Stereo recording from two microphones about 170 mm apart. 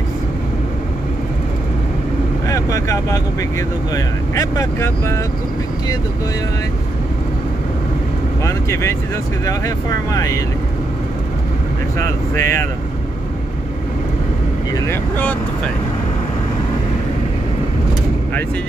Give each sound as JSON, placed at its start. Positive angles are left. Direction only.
{"t": 2.4, "sound": "speech", "side_deg": 20}
{"t": 8.5, "sound": "speech", "side_deg": 15}
{"t": 10.1, "sound": "speech", "side_deg": 20}
{"t": 12.4, "sound": "speech", "side_deg": 15}
{"t": 14.9, "sound": "speech", "side_deg": 10}